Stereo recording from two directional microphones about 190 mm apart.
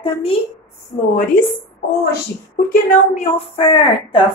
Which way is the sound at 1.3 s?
45° left (ahead or behind).